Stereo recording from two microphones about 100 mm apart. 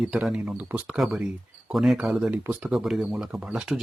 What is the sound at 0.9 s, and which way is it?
Speech, centre (ahead or behind).